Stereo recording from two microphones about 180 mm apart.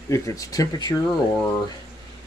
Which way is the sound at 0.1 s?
20° left (ahead or behind).